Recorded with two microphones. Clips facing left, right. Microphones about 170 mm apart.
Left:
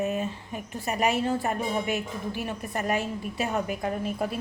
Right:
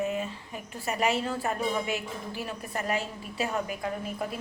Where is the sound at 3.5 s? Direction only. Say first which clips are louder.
Left 3 dB; 40° left (ahead or behind).